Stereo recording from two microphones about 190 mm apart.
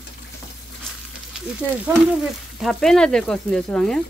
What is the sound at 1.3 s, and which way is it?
Speech, 5° right (ahead or behind).